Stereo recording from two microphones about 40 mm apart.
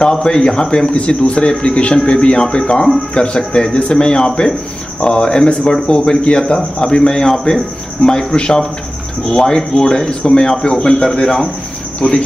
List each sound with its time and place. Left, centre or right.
0.0 s a man's voice: centre